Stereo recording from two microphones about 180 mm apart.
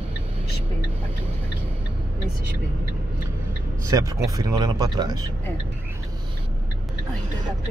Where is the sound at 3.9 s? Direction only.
20° right (ahead or behind).